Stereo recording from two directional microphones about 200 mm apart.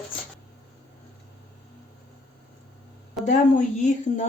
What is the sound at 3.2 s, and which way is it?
A woman's voice, 40° left (ahead or behind).